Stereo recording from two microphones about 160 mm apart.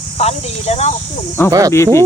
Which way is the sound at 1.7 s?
15° left (ahead or behind).